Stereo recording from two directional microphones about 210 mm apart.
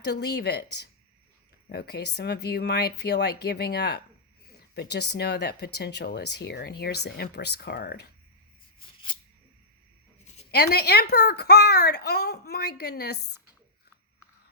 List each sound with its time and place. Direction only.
0.0 s speech: 50° left (ahead or behind)
10.5 s speech: 50° left (ahead or behind)